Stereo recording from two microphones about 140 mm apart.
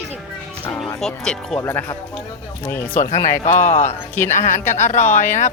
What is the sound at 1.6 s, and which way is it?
A woman's voice, 20° left (ahead or behind).